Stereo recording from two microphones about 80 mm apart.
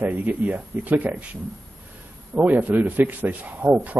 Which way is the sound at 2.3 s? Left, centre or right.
Centre.